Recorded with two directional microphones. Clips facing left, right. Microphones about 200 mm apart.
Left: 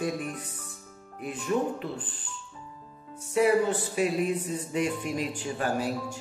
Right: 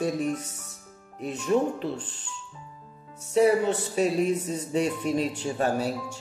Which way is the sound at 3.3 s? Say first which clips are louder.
Right 2 dB; 30° right (ahead or behind).